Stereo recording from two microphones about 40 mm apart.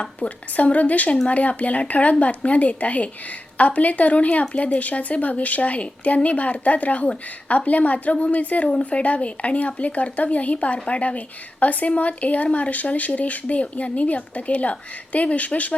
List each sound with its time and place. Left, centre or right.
0.0 s speech: left